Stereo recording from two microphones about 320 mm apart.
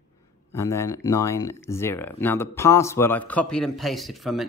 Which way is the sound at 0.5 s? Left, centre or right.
Centre.